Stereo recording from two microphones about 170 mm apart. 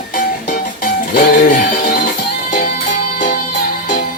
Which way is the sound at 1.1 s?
50° left (ahead or behind).